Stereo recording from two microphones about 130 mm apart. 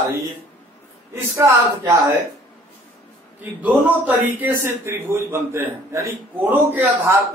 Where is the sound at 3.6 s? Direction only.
15° right (ahead or behind).